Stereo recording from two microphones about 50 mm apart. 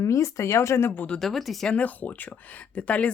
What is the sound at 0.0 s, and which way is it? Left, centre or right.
Speech, left.